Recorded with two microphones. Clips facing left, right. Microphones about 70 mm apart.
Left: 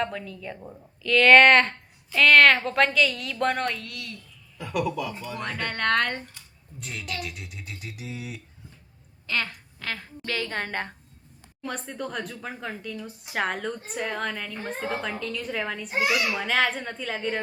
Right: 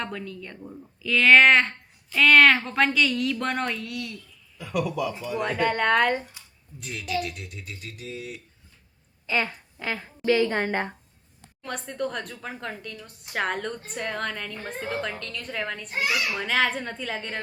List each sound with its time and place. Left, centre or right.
0.0 s a woman's voice: centre
1.0 s a woman's voice: centre
9.2 s a woman's voice: centre
11.6 s a woman's voice: centre
16.0 s a child's voice: centre
16.3 s a woman's voice: centre